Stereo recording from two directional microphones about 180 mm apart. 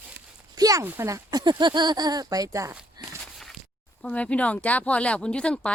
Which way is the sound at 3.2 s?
Centre (ahead or behind).